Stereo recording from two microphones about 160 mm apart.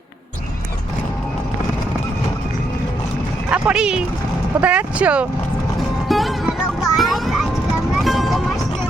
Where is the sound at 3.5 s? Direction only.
5° right (ahead or behind).